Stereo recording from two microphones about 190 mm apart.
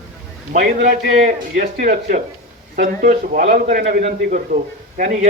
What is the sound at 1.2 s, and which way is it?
Speech, 50° right (ahead or behind).